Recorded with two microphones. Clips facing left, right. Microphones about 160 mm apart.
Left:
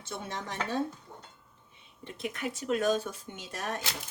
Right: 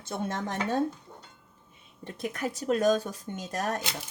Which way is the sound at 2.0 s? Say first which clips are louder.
Right 3 dB; 45° right (ahead or behind).